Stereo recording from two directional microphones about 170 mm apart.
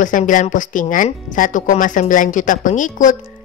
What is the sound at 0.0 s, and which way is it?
Speech, 50° left (ahead or behind).